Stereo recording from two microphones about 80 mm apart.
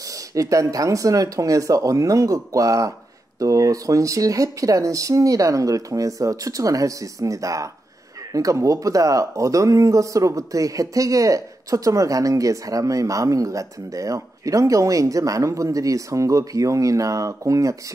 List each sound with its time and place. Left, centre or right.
0.3 s speech: right